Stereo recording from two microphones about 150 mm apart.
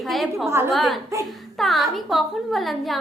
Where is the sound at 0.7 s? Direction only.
Centre (ahead or behind).